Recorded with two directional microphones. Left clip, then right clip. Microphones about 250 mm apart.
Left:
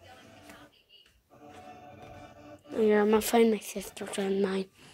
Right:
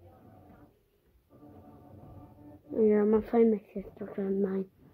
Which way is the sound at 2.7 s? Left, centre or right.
Centre.